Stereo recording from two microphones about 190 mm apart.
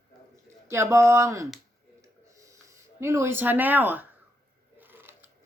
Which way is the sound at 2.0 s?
15° right (ahead or behind).